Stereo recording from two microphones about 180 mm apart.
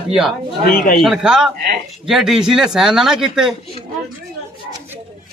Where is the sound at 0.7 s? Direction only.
55° left (ahead or behind).